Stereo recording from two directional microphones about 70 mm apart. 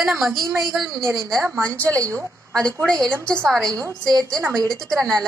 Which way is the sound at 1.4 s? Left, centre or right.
Right.